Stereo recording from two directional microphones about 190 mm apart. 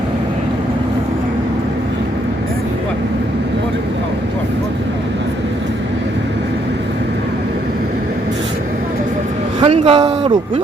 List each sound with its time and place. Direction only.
9.6 s vehicle: 30° right (ahead or behind)